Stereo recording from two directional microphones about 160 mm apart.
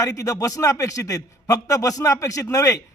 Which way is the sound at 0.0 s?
20° left (ahead or behind).